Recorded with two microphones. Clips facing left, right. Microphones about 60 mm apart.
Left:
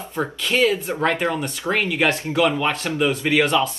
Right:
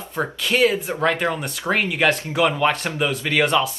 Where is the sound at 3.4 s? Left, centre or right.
Centre.